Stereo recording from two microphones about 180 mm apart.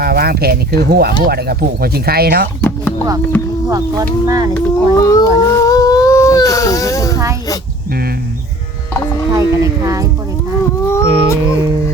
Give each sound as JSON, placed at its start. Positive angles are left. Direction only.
{"t": 0.0, "sound": "speech", "side_deg": -60}
{"t": 2.6, "sound": "music", "side_deg": 10}
{"t": 4.3, "sound": "speech", "side_deg": -20}
{"t": 4.5, "sound": "a sound", "side_deg": 15}
{"t": 9.3, "sound": "speech", "side_deg": -20}
{"t": 10.8, "sound": "a sound", "side_deg": 15}